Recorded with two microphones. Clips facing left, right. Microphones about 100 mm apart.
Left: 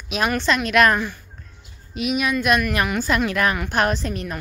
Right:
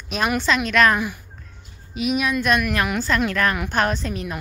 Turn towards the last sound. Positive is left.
turn(degrees=0)  # may be behind; listen again after turning